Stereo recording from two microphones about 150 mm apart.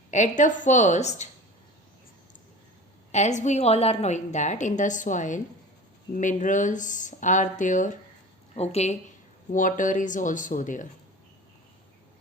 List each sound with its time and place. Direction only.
0.1 s a woman's voice: 55° left (ahead or behind)
3.1 s a woman's voice: 50° left (ahead or behind)
8.5 s a woman's voice: 45° left (ahead or behind)
9.5 s speech: 60° left (ahead or behind)